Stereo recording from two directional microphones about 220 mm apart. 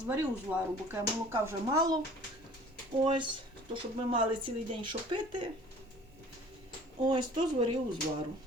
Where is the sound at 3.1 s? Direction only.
20° right (ahead or behind).